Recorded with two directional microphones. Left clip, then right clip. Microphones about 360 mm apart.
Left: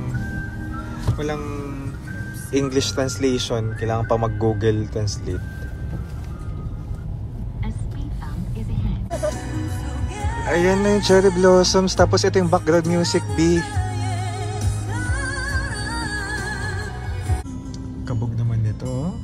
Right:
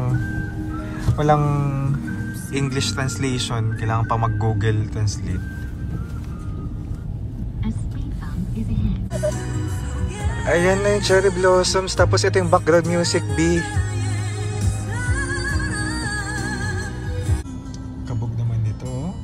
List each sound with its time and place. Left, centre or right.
1.1 s speech: centre
2.5 s speech: centre
10.5 s speech: centre
11.6 s speech: centre
13.6 s music: left